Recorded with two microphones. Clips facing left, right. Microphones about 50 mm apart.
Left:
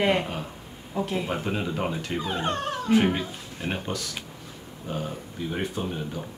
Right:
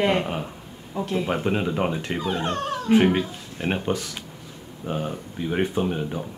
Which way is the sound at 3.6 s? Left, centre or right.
Right.